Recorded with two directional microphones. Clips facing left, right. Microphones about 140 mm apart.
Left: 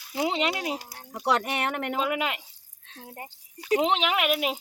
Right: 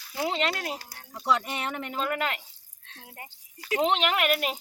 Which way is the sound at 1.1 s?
65° left (ahead or behind).